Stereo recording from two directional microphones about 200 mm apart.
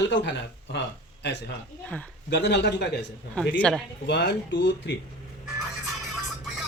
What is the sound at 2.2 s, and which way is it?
Speech, 60° left (ahead or behind).